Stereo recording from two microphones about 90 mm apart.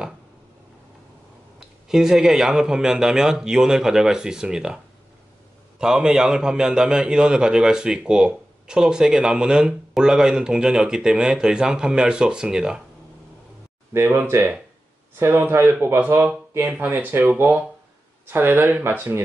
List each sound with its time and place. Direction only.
1.6 s a man's voice: 5° right (ahead or behind)
5.8 s a man's voice: 5° right (ahead or behind)
13.9 s speech: 25° right (ahead or behind)